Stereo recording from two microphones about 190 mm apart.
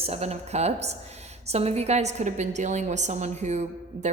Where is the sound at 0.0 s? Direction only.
35° right (ahead or behind).